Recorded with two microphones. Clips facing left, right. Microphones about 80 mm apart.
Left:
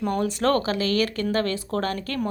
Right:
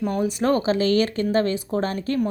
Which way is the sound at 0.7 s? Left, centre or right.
Right.